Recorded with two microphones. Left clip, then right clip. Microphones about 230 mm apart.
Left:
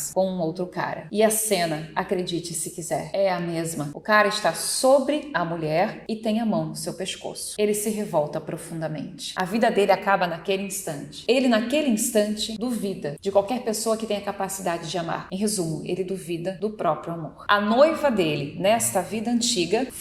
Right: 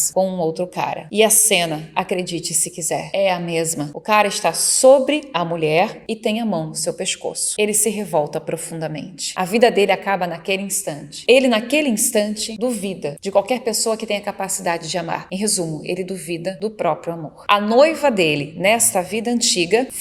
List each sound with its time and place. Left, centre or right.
0.1 s speech: right